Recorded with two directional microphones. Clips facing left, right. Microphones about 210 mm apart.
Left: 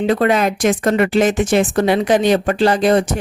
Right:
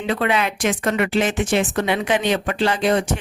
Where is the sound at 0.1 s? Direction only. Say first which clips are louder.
Left 3 dB; 40° left (ahead or behind).